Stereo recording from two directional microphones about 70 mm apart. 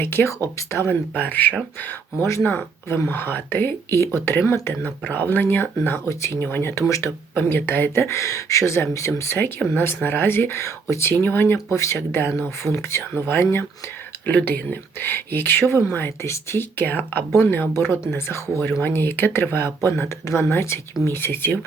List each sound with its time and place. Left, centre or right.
0.0 s speech: left
1.1 s speech: left
4.9 s speech: left
6.1 s speech: left
6.4 s speech: left
7.3 s speech: left
11.1 s speech: left
11.5 s speech: left
14.3 s speech: left